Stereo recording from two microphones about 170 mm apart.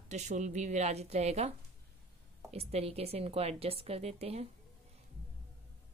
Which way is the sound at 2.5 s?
35° right (ahead or behind).